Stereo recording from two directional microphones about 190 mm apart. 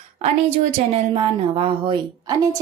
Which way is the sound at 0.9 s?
30° right (ahead or behind).